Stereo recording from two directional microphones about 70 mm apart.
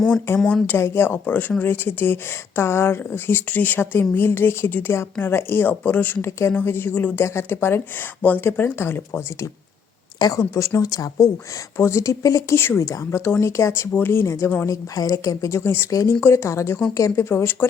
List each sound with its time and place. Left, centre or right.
0.8 s speech: left
2.6 s speech: left
7.2 s speech: left
10.2 s a woman's voice: left
11.8 s a woman's voice: left
13.1 s a woman's voice: left
14.7 s a woman's voice: left
15.9 s speech: left
16.2 s a woman's voice: left